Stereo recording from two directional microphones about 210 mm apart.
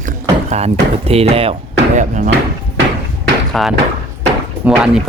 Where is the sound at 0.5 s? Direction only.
30° right (ahead or behind).